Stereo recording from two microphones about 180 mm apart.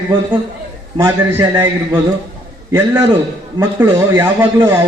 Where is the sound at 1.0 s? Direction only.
15° right (ahead or behind).